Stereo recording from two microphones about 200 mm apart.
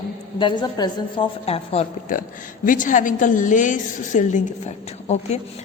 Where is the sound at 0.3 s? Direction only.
25° left (ahead or behind).